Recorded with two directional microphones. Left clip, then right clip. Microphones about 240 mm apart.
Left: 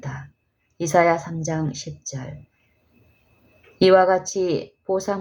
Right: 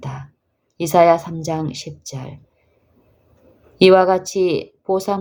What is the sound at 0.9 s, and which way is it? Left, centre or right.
Speech, right.